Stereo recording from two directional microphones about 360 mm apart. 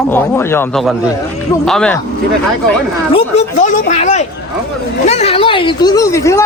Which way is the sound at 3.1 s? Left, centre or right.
Centre.